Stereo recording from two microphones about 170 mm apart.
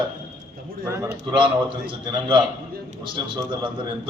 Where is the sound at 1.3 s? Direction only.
30° right (ahead or behind).